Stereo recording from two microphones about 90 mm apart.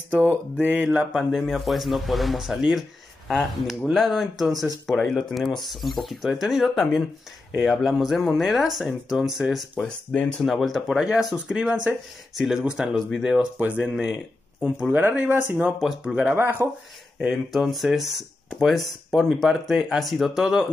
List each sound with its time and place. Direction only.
0.1 s speech: 20° right (ahead or behind)
0.8 s speech: 5° right (ahead or behind)
9.8 s speech: 10° left (ahead or behind)
13.6 s speech: 15° right (ahead or behind)
15.8 s speech: 5° right (ahead or behind)
16.3 s speech: 25° right (ahead or behind)
17.2 s speech: centre (ahead or behind)